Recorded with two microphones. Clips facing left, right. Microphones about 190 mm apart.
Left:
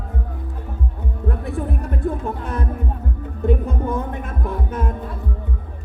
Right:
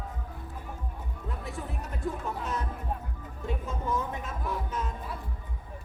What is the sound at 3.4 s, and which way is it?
Music, 60° left (ahead or behind).